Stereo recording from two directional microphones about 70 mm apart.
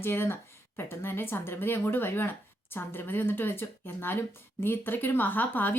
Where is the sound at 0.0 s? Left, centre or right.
Left.